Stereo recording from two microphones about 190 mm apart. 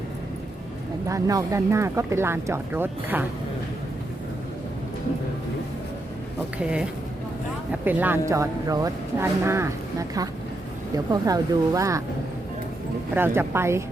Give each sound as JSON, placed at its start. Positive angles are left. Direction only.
{"t": 1.0, "sound": "speech", "side_deg": -15}
{"t": 6.6, "sound": "speech", "side_deg": -5}
{"t": 13.1, "sound": "speech", "side_deg": -10}